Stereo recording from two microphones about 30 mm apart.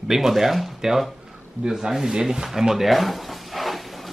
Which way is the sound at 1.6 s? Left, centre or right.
Centre.